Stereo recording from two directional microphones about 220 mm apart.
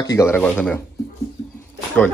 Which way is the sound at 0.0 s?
15° left (ahead or behind).